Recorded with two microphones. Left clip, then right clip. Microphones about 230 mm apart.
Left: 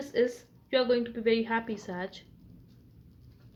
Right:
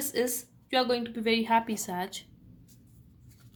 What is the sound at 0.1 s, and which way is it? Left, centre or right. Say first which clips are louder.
A woman's voice: left 3 dB; right.